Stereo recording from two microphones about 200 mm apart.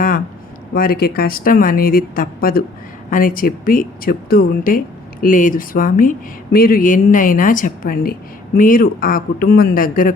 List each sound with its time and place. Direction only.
0.7 s speech: 45° left (ahead or behind)